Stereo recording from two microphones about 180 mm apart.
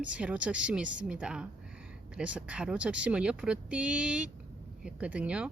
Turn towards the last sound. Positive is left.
turn(degrees=-5)  # may be behind; listen again after turning